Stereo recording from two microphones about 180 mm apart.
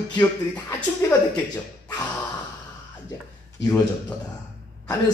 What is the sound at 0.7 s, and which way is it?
Speech, 10° left (ahead or behind).